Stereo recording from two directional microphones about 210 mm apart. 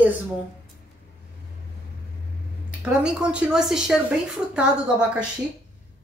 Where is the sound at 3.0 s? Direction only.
5° right (ahead or behind).